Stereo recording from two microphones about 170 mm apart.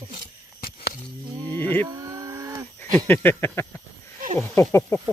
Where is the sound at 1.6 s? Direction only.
10° left (ahead or behind).